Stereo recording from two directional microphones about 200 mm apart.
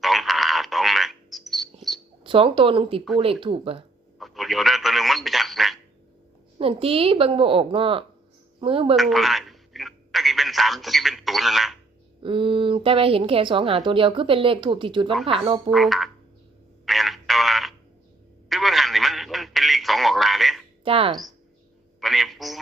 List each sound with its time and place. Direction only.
0.0 s frog: centre (ahead or behind)
2.2 s speech: 25° right (ahead or behind)
4.2 s telephone: centre (ahead or behind)
6.6 s speech: 30° right (ahead or behind)
9.0 s telephone: centre (ahead or behind)
12.2 s speech: 25° right (ahead or behind)
15.7 s speech: centre (ahead or behind)
16.8 s a sound: centre (ahead or behind)
18.4 s telephone: centre (ahead or behind)
20.8 s speech: 25° right (ahead or behind)
22.0 s a man's voice: centre (ahead or behind)